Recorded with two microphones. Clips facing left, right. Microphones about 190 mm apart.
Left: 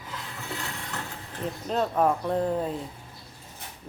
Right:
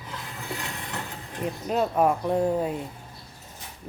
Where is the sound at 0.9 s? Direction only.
15° right (ahead or behind).